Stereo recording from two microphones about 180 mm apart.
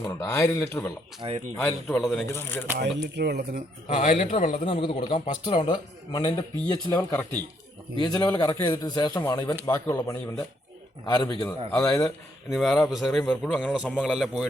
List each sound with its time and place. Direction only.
0.0 s speech: 20° left (ahead or behind)
1.2 s speech: 25° right (ahead or behind)
1.6 s a man's voice: centre (ahead or behind)
2.2 s speech: 15° left (ahead or behind)
2.7 s speech: 70° right (ahead or behind)
3.8 s a man's voice: 40° left (ahead or behind); by 6.7 s 25° left (ahead or behind)
6.9 s a man's voice: 15° left (ahead or behind)
11.7 s a man's voice: 5° left (ahead or behind)